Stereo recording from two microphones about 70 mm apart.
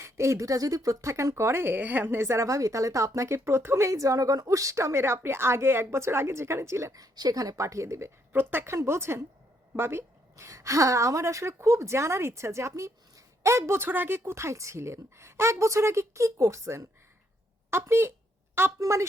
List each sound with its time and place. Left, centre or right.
0.0 s speech: right
6.9 s a woman's voice: right
8.3 s speech: right
8.7 s a woman's voice: right